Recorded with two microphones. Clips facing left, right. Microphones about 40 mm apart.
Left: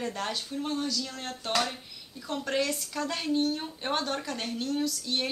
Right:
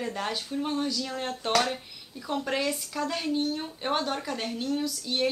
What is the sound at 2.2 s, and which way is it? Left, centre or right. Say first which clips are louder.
Speech: right 1 dB; centre.